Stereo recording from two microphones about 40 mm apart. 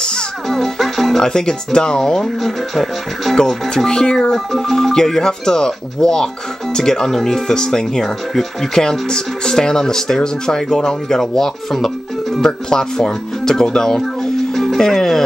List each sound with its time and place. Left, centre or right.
0.5 s music: centre
1.2 s speech: centre
2.4 s speech: centre
3.3 s speech: centre
14.5 s music: centre